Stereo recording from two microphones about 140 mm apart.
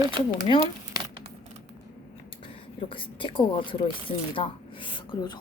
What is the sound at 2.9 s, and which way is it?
A woman's voice, 40° left (ahead or behind).